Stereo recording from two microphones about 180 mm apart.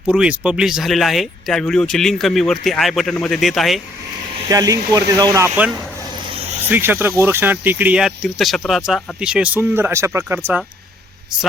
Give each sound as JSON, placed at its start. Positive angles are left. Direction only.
{"t": 0.1, "sound": "speech", "side_deg": -5}
{"t": 4.4, "sound": "speech", "side_deg": -20}
{"t": 6.7, "sound": "speech", "side_deg": -10}